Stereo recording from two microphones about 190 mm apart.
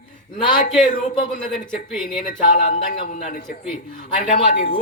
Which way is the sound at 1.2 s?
50° left (ahead or behind).